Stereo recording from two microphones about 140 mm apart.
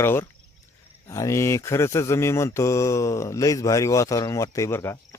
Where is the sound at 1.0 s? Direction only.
25° left (ahead or behind).